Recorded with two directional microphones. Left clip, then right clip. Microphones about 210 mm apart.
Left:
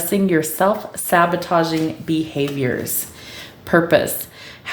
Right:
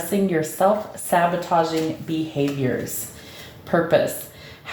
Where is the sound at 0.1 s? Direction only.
40° left (ahead or behind).